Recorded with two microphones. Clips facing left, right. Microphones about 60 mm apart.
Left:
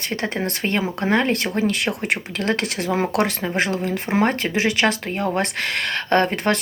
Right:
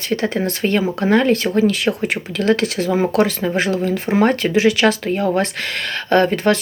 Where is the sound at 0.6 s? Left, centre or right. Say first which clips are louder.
Right 5 dB; left.